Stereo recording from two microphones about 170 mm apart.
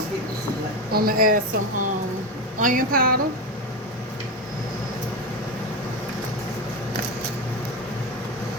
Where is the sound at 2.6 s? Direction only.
55° right (ahead or behind).